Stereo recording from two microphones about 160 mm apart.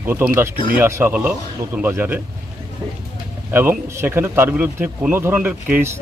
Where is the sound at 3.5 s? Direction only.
15° right (ahead or behind).